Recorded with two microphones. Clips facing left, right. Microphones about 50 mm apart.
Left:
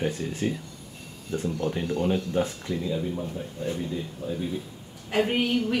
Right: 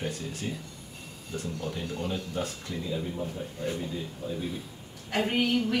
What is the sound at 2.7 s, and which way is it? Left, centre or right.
Speech, centre.